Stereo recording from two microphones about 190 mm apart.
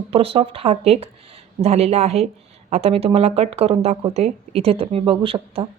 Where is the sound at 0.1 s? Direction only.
30° right (ahead or behind).